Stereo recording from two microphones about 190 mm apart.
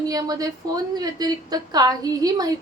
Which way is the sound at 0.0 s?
20° right (ahead or behind).